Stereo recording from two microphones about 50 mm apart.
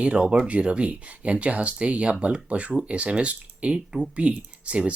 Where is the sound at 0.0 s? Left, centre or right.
Right.